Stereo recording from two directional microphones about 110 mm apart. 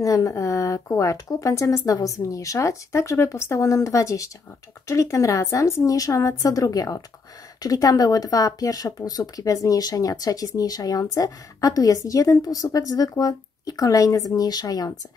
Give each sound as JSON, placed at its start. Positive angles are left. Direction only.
{"t": 0.0, "sound": "a woman's voice", "side_deg": 30}